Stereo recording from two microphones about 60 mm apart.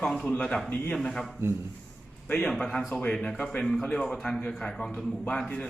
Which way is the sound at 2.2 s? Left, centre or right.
Left.